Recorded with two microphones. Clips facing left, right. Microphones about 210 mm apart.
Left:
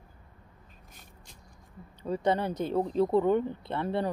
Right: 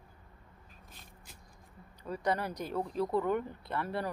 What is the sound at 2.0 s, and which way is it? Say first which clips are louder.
Speech: left 6 dB; 25° left (ahead or behind).